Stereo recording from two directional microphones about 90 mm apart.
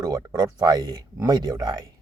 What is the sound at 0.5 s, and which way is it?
Speech, 50° right (ahead or behind).